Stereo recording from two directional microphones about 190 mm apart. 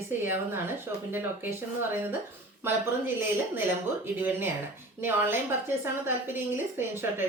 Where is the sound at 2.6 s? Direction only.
10° right (ahead or behind).